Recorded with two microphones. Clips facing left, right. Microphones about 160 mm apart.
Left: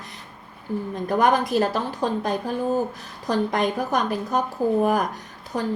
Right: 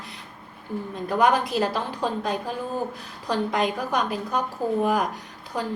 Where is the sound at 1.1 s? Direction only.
45° left (ahead or behind).